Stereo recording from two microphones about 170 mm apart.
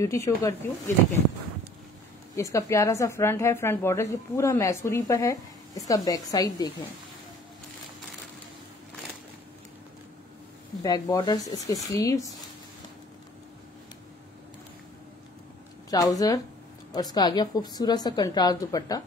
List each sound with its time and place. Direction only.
0.0 s speech: 15° left (ahead or behind)
2.3 s speech: 15° left (ahead or behind)
10.8 s a woman's voice: 20° left (ahead or behind)
15.9 s a woman's voice: 20° left (ahead or behind)